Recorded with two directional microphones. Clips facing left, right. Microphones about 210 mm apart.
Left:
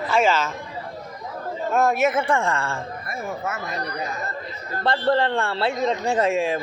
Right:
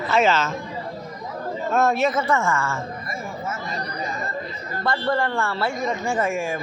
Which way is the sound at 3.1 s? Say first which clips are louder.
Left 5 dB; 70° left (ahead or behind).